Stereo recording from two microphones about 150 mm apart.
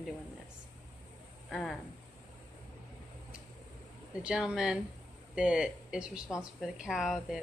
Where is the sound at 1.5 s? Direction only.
5° left (ahead or behind).